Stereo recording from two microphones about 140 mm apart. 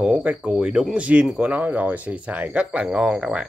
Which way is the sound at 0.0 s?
5° right (ahead or behind).